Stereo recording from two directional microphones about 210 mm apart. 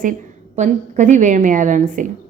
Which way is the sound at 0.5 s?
35° right (ahead or behind).